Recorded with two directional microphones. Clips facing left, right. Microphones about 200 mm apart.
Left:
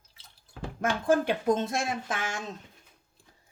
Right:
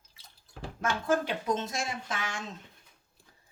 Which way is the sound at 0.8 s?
55° left (ahead or behind).